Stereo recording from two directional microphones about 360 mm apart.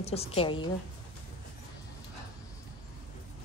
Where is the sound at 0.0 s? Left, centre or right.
Centre.